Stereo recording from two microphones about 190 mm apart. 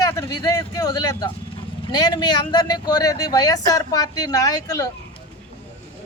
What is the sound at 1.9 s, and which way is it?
Speech, 20° left (ahead or behind).